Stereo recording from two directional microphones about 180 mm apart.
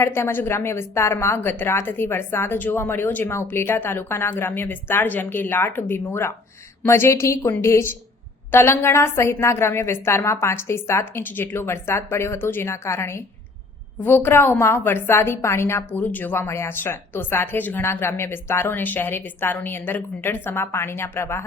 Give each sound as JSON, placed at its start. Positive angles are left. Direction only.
{"t": 0.0, "sound": "a woman's voice", "side_deg": 15}